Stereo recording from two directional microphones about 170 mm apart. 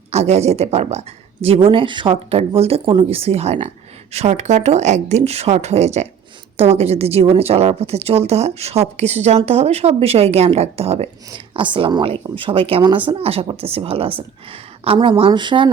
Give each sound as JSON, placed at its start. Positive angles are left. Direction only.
{"t": 0.1, "sound": "a woman's voice", "side_deg": -40}